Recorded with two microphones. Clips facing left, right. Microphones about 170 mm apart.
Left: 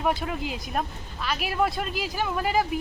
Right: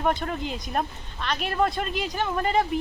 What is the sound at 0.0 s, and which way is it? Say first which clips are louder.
Speech: right 1 dB; 5° left (ahead or behind).